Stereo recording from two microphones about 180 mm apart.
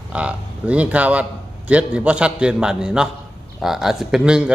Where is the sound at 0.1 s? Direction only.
5° right (ahead or behind).